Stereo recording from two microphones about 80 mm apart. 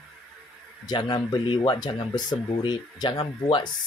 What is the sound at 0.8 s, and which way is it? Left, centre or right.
Speech, left.